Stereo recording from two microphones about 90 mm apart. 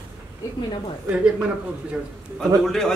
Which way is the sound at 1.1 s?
10° right (ahead or behind).